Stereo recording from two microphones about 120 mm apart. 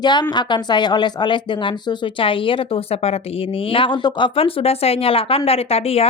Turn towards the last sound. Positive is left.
turn(degrees=55)  # may be behind; listen again after turning